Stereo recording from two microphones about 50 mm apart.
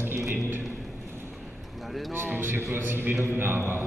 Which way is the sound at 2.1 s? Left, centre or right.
Right.